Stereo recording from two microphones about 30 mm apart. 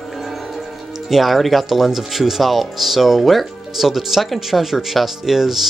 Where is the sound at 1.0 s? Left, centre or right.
Centre.